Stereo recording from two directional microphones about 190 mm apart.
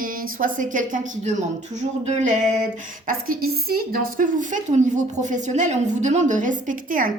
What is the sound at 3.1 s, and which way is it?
A woman's voice, 50° right (ahead or behind).